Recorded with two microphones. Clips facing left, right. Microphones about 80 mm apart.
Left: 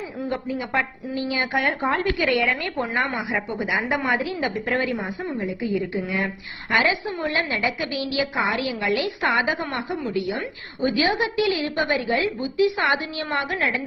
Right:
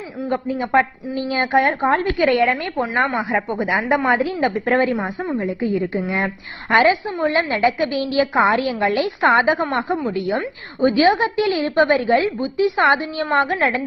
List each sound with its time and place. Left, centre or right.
0.3 s a woman's voice: right